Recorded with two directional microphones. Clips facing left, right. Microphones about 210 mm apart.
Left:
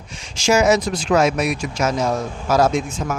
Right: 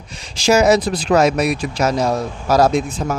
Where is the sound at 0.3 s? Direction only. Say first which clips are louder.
Right 3 dB; 35° right (ahead or behind).